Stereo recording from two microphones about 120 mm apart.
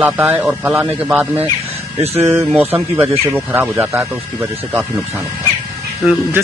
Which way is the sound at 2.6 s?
15° right (ahead or behind).